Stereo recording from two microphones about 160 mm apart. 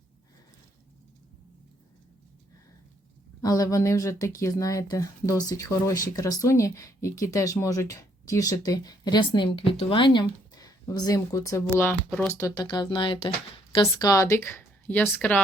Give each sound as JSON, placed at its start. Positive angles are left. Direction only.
{"t": 3.4, "sound": "speech", "side_deg": 20}
{"t": 12.3, "sound": "speech", "side_deg": 25}
{"t": 13.9, "sound": "speech", "side_deg": 20}